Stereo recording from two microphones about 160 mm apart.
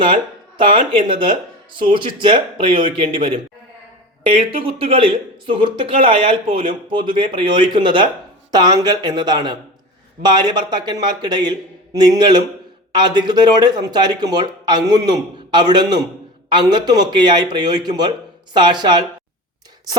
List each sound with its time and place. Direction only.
0.6 s speech: 30° right (ahead or behind)
4.6 s speech: 35° right (ahead or behind)